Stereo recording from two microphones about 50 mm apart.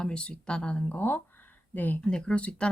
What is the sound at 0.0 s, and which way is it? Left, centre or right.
Speech, left.